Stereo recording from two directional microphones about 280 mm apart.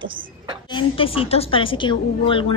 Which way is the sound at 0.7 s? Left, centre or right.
Centre.